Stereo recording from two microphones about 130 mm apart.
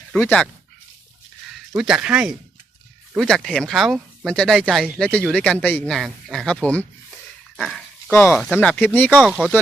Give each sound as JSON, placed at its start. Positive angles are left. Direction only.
{"t": 0.2, "sound": "speech", "side_deg": 15}
{"t": 1.7, "sound": "speech", "side_deg": -5}
{"t": 3.2, "sound": "speech", "side_deg": 5}
{"t": 7.5, "sound": "dog", "side_deg": 5}
{"t": 8.1, "sound": "speech", "side_deg": 15}
{"t": 9.2, "sound": "speech", "side_deg": -10}